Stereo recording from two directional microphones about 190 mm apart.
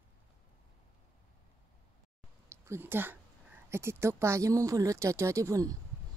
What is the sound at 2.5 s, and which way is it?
Speech, 15° right (ahead or behind).